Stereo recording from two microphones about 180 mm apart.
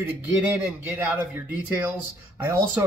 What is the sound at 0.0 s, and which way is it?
Speech, 10° right (ahead or behind).